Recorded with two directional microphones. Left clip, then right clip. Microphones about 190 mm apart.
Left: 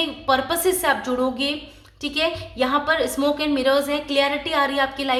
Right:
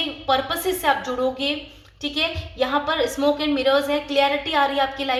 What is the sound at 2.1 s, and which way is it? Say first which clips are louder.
A woman's voice: left 1 dB; 25° left (ahead or behind).